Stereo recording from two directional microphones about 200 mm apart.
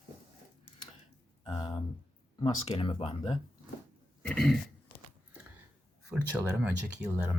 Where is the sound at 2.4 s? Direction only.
25° left (ahead or behind).